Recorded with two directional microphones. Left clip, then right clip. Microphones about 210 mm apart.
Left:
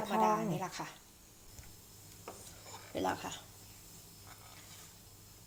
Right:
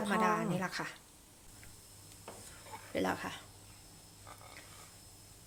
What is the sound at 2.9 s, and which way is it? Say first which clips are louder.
Speech: right 1 dB; 15° right (ahead or behind).